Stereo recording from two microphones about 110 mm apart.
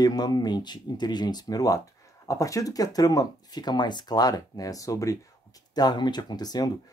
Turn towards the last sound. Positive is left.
turn(degrees=35)  # may be behind; listen again after turning